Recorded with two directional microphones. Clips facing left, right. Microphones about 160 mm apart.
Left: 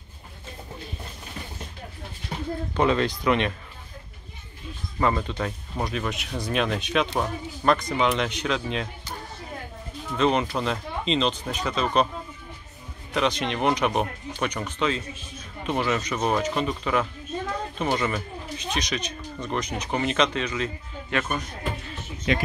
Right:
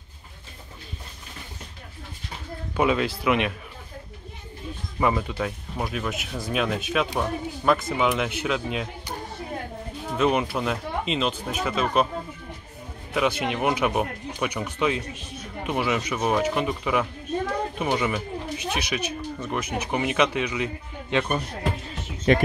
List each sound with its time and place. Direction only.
2.7 s speech: 10° right (ahead or behind)
5.0 s speech: 10° right (ahead or behind)
10.1 s speech: 10° right (ahead or behind)
13.1 s speech: 10° right (ahead or behind)
22.3 s speech: 50° right (ahead or behind)